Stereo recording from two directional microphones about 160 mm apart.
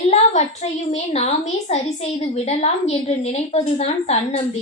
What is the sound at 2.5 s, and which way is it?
A woman's voice, 45° left (ahead or behind).